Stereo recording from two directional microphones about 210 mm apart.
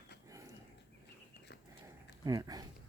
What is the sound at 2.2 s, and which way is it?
Speech, 20° right (ahead or behind).